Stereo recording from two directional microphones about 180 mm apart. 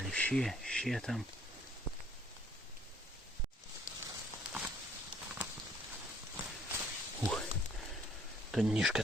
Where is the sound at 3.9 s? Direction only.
45° left (ahead or behind).